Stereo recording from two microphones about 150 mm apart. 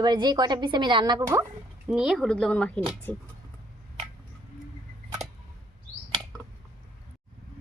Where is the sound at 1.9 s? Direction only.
Centre (ahead or behind).